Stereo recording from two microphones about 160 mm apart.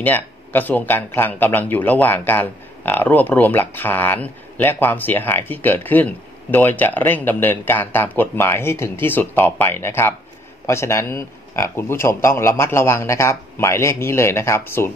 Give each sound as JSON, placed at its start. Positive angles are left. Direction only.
{"t": 0.0, "sound": "speech", "side_deg": 10}